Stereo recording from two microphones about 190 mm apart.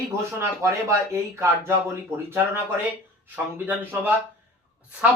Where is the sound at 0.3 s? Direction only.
15° right (ahead or behind).